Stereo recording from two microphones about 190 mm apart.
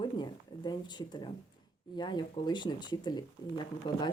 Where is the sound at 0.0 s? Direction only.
20° left (ahead or behind).